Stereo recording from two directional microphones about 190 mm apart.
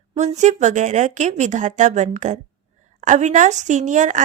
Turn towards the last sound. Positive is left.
turn(degrees=-40)  # may be behind; listen again after turning